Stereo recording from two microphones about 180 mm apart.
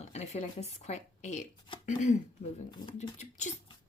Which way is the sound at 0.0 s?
40° left (ahead or behind).